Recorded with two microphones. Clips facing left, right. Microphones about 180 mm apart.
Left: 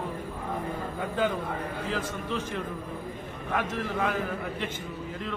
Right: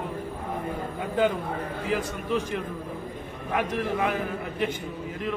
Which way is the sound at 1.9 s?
15° right (ahead or behind).